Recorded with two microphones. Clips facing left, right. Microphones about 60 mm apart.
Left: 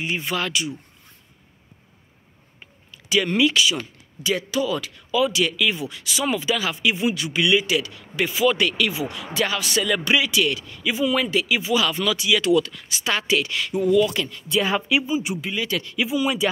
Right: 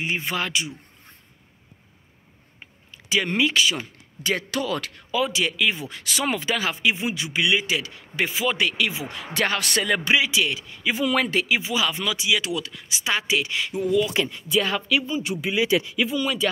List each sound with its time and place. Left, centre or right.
0.0 s speech: right
2.6 s a sound: right
4.2 s speech: right
5.2 s speech: right
9.3 s speech: right
9.8 s speech: right
11.0 s speech: right
11.4 s speech: right
14.6 s speech: centre
15.4 s speech: centre
16.0 s speech: centre